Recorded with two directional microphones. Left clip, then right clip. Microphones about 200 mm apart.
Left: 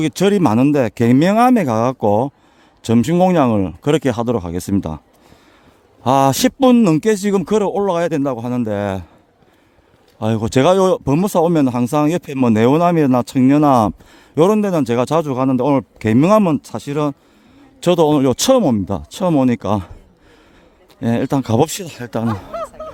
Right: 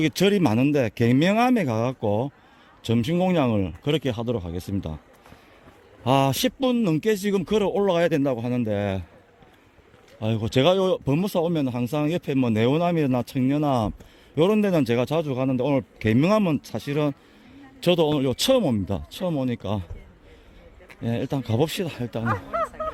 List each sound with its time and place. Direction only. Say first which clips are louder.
0.0 s speech: left 6 dB; 25° left (ahead or behind)
6.0 s speech: left 8 dB; 30° left (ahead or behind)
10.2 s speech: left 7 dB; 35° left (ahead or behind)
14.6 s speech: left 5 dB; 20° left (ahead or behind); by 19.9 s 35° left (ahead or behind)
21.0 s speech: left 10 dB; 40° left (ahead or behind)
22.5 s a sound: even; 55° left (ahead or behind)